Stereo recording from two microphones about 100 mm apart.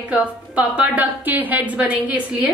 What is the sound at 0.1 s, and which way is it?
A woman's voice, 15° right (ahead or behind).